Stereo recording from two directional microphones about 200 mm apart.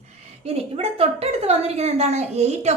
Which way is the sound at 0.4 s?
30° right (ahead or behind).